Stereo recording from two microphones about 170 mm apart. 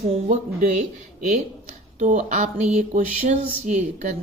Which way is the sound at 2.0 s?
45° right (ahead or behind).